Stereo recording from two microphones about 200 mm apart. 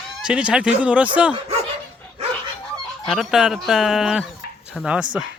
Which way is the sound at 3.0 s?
Centre (ahead or behind).